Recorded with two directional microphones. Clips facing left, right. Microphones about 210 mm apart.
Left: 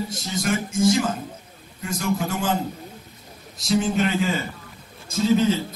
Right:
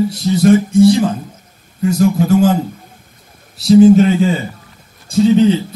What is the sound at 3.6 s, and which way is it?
A man's voice, 35° right (ahead or behind).